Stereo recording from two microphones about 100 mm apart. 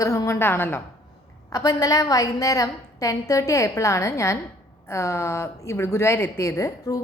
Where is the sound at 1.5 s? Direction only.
35° left (ahead or behind).